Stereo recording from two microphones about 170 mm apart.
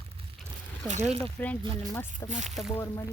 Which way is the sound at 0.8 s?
40° right (ahead or behind).